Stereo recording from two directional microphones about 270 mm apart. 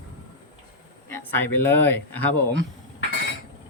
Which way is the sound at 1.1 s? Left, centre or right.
Centre.